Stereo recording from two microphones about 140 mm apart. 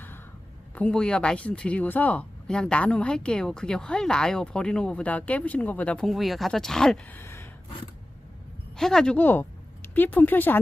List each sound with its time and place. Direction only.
0.8 s speech: 5° left (ahead or behind)
7.2 s a sound: 15° left (ahead or behind)
8.7 s speech: 5° left (ahead or behind)